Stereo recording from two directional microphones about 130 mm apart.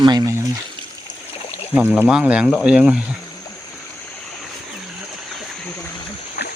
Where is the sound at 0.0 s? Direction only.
30° right (ahead or behind).